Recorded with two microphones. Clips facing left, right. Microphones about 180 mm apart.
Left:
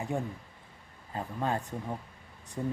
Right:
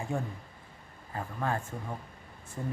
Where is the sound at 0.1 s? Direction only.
20° left (ahead or behind).